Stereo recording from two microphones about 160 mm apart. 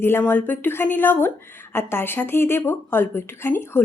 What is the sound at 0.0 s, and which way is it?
A woman's voice, 15° left (ahead or behind).